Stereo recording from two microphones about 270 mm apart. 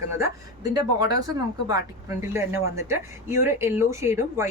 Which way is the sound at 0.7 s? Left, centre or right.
Centre.